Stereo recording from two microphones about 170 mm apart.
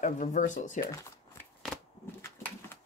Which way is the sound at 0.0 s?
50° left (ahead or behind).